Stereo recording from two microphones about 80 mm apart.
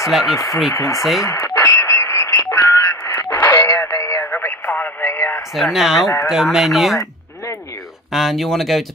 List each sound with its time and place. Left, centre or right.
0.0 s speech: centre
0.7 s speech: left
1.2 s radio: left
2.7 s music: left
4.4 s radio: left
5.0 s a sound: left
5.5 s speech: centre
8.1 s speech: centre